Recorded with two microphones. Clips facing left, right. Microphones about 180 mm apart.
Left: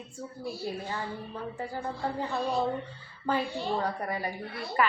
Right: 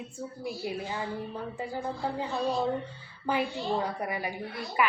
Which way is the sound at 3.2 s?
10° right (ahead or behind).